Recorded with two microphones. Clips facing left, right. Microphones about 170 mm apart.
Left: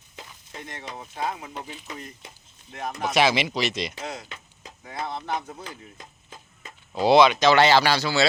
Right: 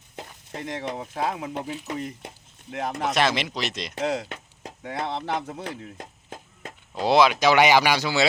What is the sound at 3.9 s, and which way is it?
Speech, 90° right.